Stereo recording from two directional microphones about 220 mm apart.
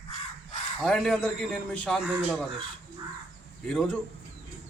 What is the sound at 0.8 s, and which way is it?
Speech, centre (ahead or behind).